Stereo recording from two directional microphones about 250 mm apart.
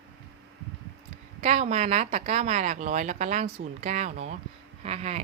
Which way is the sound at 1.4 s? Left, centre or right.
Right.